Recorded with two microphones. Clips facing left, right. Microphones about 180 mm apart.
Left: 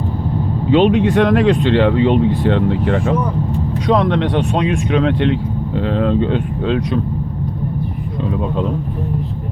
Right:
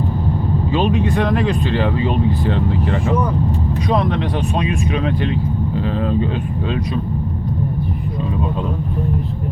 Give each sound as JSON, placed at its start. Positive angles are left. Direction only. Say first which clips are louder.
{"t": 0.7, "sound": "speech", "louder": "left 7 dB", "side_deg": 80}